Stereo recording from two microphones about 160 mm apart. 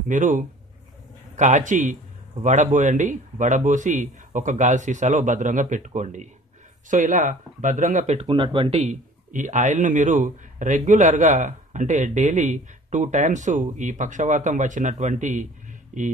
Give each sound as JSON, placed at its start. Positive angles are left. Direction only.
{"t": 0.1, "sound": "speech", "side_deg": -50}
{"t": 8.3, "sound": "speech", "side_deg": -30}